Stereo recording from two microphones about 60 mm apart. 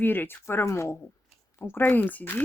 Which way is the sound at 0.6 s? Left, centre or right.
Left.